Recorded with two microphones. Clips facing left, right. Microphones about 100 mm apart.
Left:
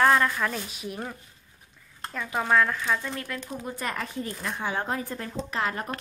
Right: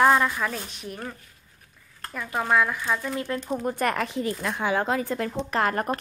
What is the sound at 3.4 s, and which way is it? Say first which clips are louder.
Speech: right 7 dB; 55° right (ahead or behind).